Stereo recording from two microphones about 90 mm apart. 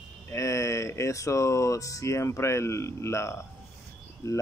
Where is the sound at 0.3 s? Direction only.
30° left (ahead or behind).